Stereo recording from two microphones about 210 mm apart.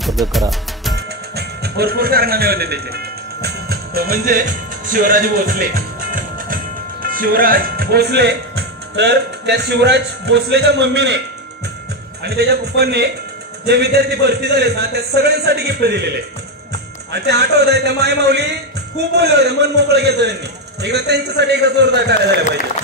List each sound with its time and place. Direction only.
0.0 s music: centre (ahead or behind)
0.9 s music: 50° right (ahead or behind)
8.9 s a man's voice: 50° right (ahead or behind)
12.2 s a man's voice: 50° right (ahead or behind)
17.1 s a man's voice: 50° right (ahead or behind)